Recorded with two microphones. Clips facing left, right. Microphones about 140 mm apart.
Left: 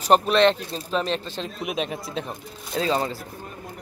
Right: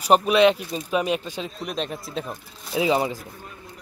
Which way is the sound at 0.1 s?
5° right (ahead or behind).